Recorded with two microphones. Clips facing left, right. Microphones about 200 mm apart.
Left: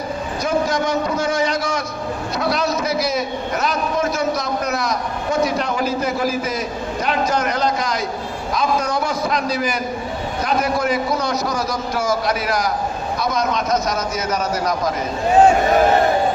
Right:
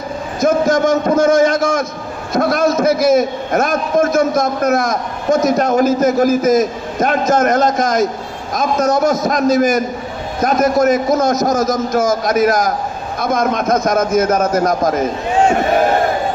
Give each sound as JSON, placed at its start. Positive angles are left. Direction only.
{"t": 0.4, "sound": "a man's voice", "side_deg": -45}